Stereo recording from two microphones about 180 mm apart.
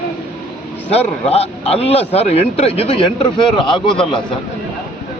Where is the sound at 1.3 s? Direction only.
35° left (ahead or behind).